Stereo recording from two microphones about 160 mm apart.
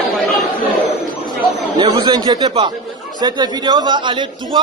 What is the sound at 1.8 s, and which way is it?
A man's voice, 35° right (ahead or behind).